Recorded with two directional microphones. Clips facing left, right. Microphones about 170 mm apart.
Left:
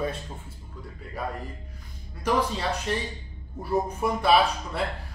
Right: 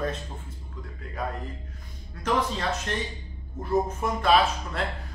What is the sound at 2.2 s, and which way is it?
A man's voice, 10° left (ahead or behind).